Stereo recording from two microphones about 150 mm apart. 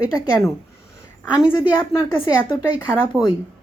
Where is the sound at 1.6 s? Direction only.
25° left (ahead or behind).